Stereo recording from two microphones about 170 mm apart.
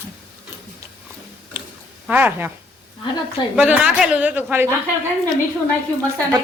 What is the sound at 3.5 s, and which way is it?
A woman's voice, 10° right (ahead or behind).